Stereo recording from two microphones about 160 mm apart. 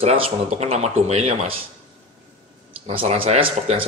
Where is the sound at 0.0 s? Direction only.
40° right (ahead or behind).